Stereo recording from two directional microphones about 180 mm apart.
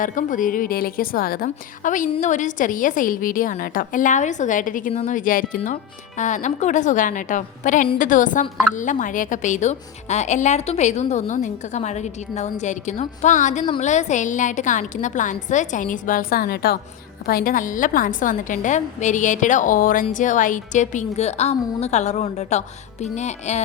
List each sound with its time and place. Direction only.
0.0 s a woman's voice: 45° left (ahead or behind)